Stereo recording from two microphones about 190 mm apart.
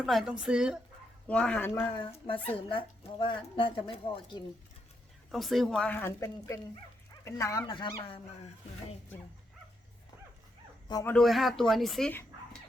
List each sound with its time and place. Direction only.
0.0 s speech: centre (ahead or behind)
1.3 s a woman's voice: 5° left (ahead or behind)
2.0 s speech: 30° left (ahead or behind)
5.3 s a woman's voice: centre (ahead or behind); by 8.2 s 25° left (ahead or behind)
10.8 s speech: 20° left (ahead or behind)
11.1 s speech: centre (ahead or behind)